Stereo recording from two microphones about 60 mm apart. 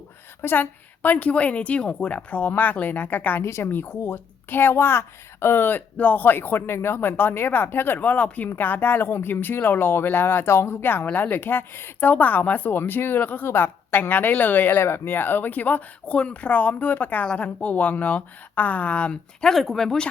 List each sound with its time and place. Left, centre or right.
0.4 s a woman's voice: left
3.4 s a woman's voice: left
3.7 s speech: left
13.4 s a woman's voice: left; by 20.1 s centre